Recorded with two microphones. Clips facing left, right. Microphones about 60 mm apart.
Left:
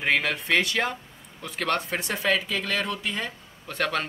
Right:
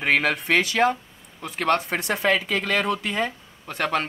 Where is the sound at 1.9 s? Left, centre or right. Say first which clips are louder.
Right 3 dB; right.